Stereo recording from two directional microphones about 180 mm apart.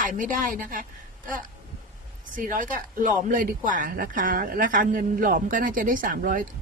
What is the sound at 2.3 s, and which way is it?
Speech, 50° right (ahead or behind).